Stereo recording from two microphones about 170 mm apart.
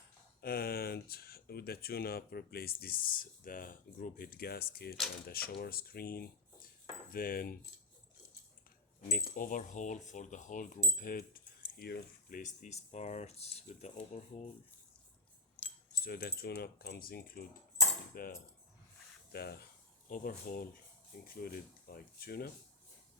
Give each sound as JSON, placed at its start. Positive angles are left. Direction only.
{"t": 0.4, "sound": "speech", "side_deg": 60}
{"t": 9.0, "sound": "speech", "side_deg": 60}
{"t": 12.4, "sound": "speech", "side_deg": 45}
{"t": 15.9, "sound": "speech", "side_deg": 60}
{"t": 18.1, "sound": "cutlery", "side_deg": 55}
{"t": 19.3, "sound": "speech", "side_deg": 70}
{"t": 20.1, "sound": "speech", "side_deg": 55}